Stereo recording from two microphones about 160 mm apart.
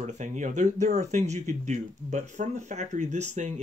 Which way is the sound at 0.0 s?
50° right (ahead or behind).